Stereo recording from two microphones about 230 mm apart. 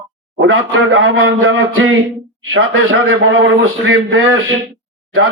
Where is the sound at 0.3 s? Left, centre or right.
Right.